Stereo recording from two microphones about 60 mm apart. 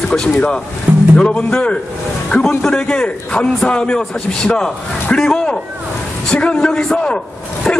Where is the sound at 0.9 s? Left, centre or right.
Right.